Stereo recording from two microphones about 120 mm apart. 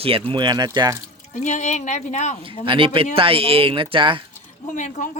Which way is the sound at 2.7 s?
50° right (ahead or behind).